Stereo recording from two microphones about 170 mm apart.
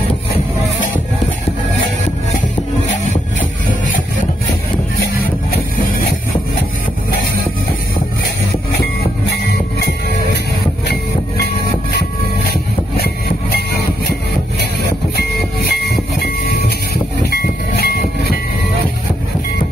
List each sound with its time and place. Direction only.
12.9 s vehicle: 65° left (ahead or behind)
15.7 s train: 70° left (ahead or behind)